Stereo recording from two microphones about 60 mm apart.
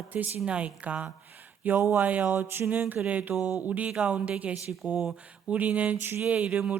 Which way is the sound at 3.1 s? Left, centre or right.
Right.